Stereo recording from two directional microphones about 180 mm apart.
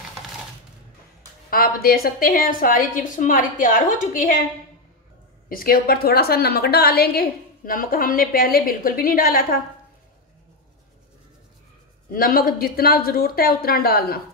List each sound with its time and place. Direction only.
1.5 s a woman's voice: 55° left (ahead or behind)
5.5 s a woman's voice: 55° left (ahead or behind)
12.1 s a woman's voice: 55° left (ahead or behind)